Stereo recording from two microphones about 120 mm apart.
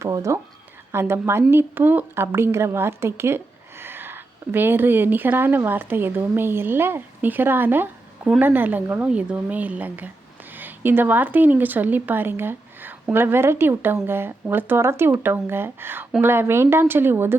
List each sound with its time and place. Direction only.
0.0 s a woman's voice: 25° right (ahead or behind)